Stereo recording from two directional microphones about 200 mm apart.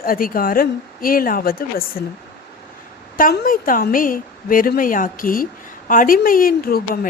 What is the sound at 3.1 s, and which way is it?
Speech, 45° left (ahead or behind).